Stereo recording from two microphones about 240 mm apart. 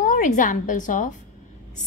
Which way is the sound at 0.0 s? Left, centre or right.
Left.